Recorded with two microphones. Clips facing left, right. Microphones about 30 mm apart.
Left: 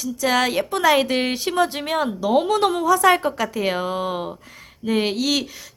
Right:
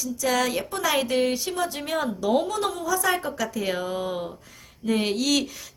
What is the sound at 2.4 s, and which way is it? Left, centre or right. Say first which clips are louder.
Speech: left 7 dB; left.